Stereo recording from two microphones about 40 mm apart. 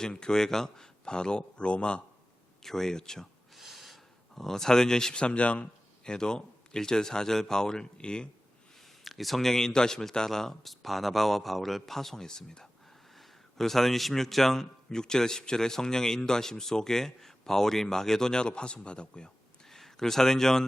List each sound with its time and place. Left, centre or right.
0.1 s speech: centre
2.6 s a man's voice: centre
3.6 s snort: centre
4.4 s a man's voice: centre
5.2 s speech: left
6.1 s a man's voice: centre
9.0 s a man's voice: centre; by 19.3 s left
19.7 s speech: centre